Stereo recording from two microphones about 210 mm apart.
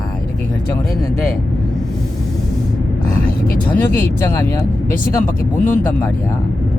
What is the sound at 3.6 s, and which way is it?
Speech, 10° left (ahead or behind).